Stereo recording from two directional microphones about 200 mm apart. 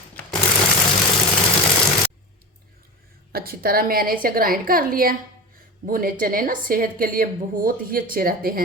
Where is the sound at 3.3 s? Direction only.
50° right (ahead or behind).